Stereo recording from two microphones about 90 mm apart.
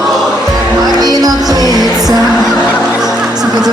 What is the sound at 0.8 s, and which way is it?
Music, 45° right (ahead or behind).